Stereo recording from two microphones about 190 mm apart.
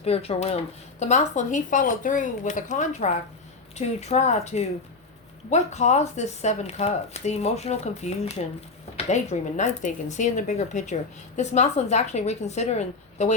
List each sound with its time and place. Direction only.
0.0 s speech: 30° left (ahead or behind)